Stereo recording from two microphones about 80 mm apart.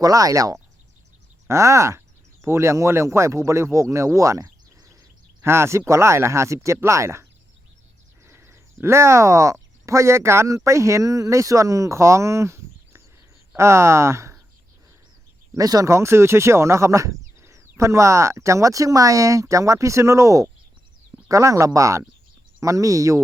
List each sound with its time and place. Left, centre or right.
0.0 s speech: right
8.3 s speech: right
15.5 s speech: right
15.9 s speech: right